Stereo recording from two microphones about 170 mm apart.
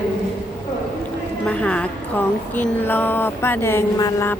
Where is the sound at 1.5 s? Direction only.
5° left (ahead or behind).